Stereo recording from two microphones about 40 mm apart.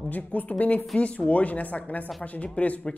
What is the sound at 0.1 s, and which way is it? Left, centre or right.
Speech, left.